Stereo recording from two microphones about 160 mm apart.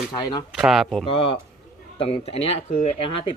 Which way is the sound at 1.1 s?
35° left (ahead or behind).